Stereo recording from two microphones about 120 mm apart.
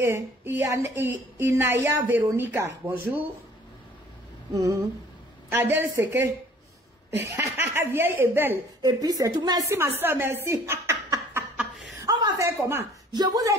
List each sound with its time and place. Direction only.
0.0 s a woman's voice: 20° right (ahead or behind)
4.6 s a woman's voice: 25° right (ahead or behind)
8.8 s speech: 30° right (ahead or behind)
12.0 s chuckle: 35° right (ahead or behind)
12.4 s a woman's voice: 20° right (ahead or behind)
13.1 s speech: 35° right (ahead or behind)